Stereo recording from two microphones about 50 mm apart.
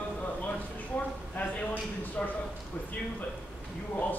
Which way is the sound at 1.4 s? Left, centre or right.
Left.